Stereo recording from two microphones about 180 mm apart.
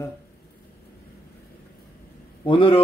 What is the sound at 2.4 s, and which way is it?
Speech, 30° left (ahead or behind).